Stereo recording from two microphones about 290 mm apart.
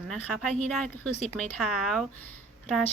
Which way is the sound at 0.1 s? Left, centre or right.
Centre.